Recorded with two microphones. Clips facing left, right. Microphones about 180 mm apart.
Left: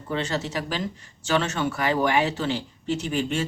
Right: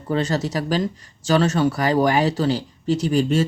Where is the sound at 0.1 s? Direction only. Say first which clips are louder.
Right 5 dB; 40° right (ahead or behind).